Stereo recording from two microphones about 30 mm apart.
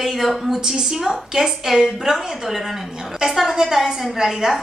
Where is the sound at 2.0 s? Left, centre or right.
Centre.